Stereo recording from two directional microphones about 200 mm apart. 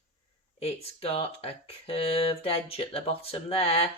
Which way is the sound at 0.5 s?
30° left (ahead or behind).